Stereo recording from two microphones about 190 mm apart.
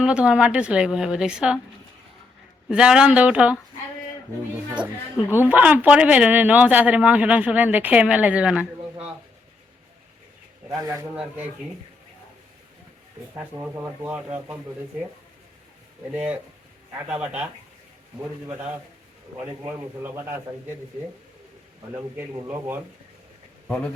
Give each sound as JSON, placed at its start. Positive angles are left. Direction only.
{"t": 0.0, "sound": "speech", "side_deg": -5}
{"t": 2.6, "sound": "speech", "side_deg": -5}
{"t": 5.3, "sound": "a man's voice", "side_deg": -10}
{"t": 10.7, "sound": "a man's voice", "side_deg": -20}
{"t": 13.3, "sound": "a man's voice", "side_deg": -10}
{"t": 16.1, "sound": "a man's voice", "side_deg": -10}
{"t": 22.1, "sound": "a man's voice", "side_deg": -10}